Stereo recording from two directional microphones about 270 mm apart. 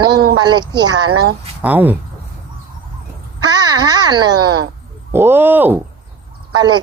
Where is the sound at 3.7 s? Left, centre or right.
Centre.